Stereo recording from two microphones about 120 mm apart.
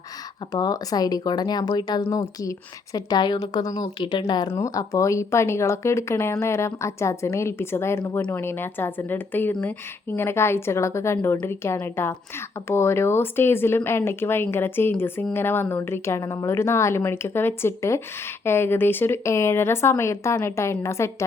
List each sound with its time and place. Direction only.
0.5 s a woman's voice: 30° left (ahead or behind)
4.0 s a woman's voice: 40° left (ahead or behind)
4.5 s speech: 30° left (ahead or behind)